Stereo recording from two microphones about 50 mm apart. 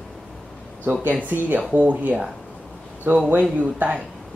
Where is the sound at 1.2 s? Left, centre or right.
Right.